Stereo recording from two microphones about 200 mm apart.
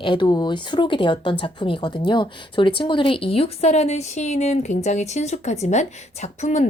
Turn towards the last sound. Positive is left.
turn(degrees=35)  # may be behind; listen again after turning